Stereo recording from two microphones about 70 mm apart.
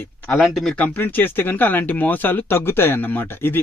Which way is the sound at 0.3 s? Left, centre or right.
Centre.